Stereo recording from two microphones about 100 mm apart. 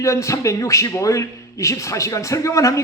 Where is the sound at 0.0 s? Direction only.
30° left (ahead or behind).